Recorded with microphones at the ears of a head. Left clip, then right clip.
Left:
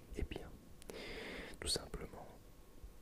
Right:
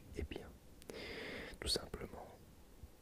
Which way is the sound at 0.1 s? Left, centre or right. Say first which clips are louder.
Even; centre.